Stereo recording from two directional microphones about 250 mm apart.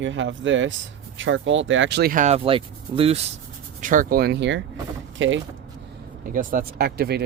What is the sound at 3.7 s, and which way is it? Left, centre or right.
Speech, right.